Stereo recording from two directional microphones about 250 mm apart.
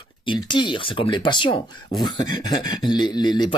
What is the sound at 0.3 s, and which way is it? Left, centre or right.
Speech, centre.